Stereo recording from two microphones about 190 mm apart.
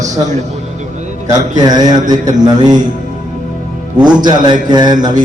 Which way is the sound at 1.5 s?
20° right (ahead or behind).